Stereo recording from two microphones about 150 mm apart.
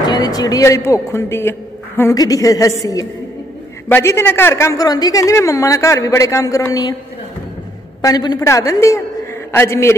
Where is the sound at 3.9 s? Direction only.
15° left (ahead or behind).